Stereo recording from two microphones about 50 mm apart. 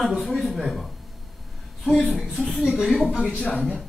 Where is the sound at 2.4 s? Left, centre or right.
Centre.